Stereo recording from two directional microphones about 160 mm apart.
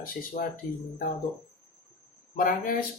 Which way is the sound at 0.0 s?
65° left (ahead or behind).